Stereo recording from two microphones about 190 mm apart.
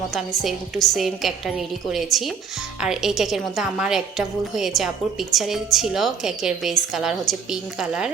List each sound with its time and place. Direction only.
0.1 s a woman's voice: centre (ahead or behind)